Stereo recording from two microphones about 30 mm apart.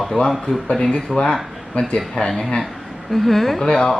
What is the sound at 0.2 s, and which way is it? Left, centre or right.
Speech, left.